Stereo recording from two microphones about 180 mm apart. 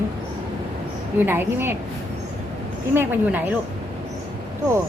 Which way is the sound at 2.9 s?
15° right (ahead or behind).